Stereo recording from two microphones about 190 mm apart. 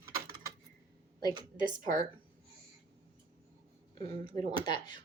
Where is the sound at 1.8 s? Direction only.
45° right (ahead or behind).